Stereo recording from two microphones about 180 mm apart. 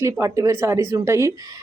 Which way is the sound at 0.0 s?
20° right (ahead or behind).